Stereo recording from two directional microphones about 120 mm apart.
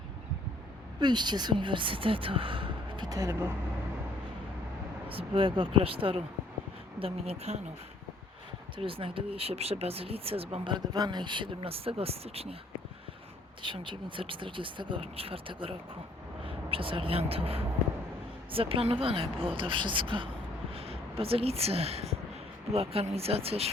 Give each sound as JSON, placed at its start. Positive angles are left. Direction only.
{"t": 0.9, "sound": "speech", "side_deg": -40}
{"t": 5.0, "sound": "speech", "side_deg": -50}
{"t": 7.0, "sound": "speech", "side_deg": -60}
{"t": 8.8, "sound": "speech", "side_deg": -50}
{"t": 13.6, "sound": "speech", "side_deg": -45}